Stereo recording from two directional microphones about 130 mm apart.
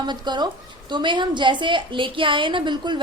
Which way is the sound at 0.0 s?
35° right (ahead or behind).